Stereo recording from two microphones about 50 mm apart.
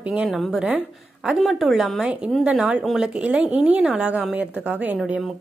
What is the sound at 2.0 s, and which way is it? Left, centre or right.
A woman's voice, right.